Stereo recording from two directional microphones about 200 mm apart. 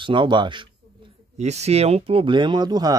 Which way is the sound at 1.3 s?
35° right (ahead or behind).